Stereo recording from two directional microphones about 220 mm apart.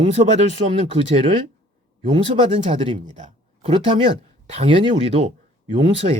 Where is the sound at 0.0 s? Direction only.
30° right (ahead or behind).